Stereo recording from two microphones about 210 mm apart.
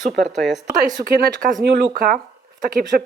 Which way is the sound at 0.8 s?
45° right (ahead or behind).